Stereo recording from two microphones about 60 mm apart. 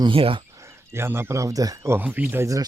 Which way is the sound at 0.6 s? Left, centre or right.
Right.